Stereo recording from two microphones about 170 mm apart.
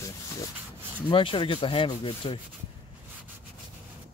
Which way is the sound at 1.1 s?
30° left (ahead or behind).